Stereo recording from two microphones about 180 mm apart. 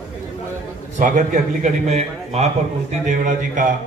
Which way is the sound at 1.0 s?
45° right (ahead or behind).